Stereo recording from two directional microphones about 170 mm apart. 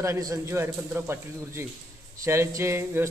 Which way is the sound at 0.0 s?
20° right (ahead or behind).